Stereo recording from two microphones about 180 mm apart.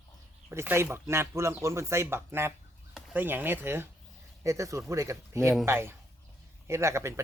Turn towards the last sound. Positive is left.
turn(degrees=-15)  # may be behind; listen again after turning